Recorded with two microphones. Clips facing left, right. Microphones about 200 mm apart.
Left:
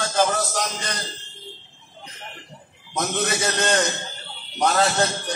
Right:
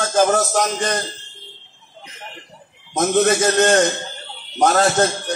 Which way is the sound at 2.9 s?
45° right (ahead or behind).